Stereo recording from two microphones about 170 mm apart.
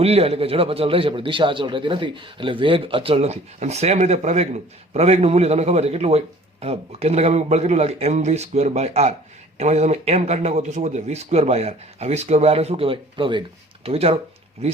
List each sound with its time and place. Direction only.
0.0 s a man's voice: 35° right (ahead or behind)